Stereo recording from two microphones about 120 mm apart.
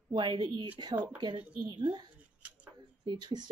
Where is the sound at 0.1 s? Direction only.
40° right (ahead or behind).